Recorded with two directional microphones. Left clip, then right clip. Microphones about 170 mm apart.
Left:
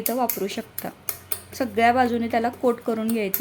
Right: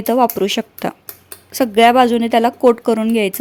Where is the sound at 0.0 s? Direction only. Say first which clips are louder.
Right 11 dB; 55° right (ahead or behind).